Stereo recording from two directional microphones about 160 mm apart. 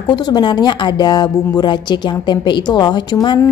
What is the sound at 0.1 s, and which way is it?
A woman's voice, 25° left (ahead or behind).